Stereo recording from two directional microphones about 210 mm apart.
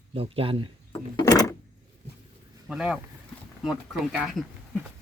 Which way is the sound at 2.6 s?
5° right (ahead or behind).